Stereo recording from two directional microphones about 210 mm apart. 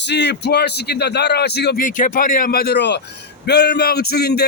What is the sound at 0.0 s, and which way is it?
Speech, 55° left (ahead or behind).